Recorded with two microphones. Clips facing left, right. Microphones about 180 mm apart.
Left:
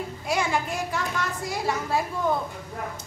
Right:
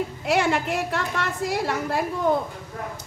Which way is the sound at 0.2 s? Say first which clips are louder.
Right 4 dB; 65° right (ahead or behind).